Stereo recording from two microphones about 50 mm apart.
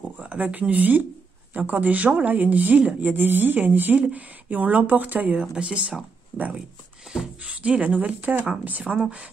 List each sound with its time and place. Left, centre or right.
0.2 s speech: right
5.3 s speech: centre
7.1 s a sound: centre
7.6 s speech: right